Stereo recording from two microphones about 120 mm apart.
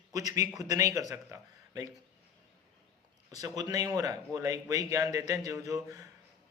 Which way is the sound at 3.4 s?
30° right (ahead or behind).